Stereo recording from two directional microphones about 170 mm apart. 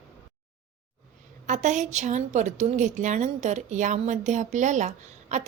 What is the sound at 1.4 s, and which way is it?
A woman's voice, 45° right (ahead or behind).